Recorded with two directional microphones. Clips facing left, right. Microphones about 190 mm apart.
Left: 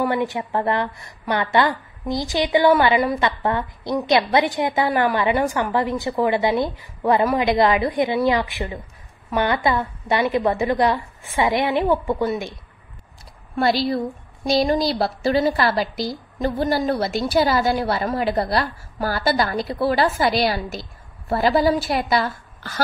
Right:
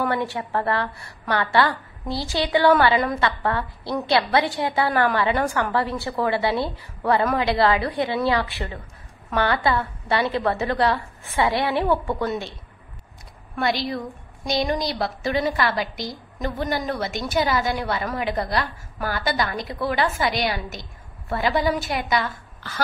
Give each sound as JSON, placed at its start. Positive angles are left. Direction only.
{"t": 0.0, "sound": "a woman's voice", "side_deg": 15}
{"t": 13.6, "sound": "a woman's voice", "side_deg": 35}